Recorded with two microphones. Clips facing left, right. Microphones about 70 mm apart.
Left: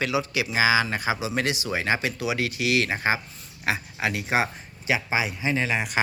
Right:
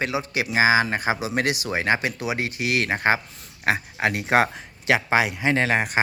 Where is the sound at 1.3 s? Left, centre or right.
Right.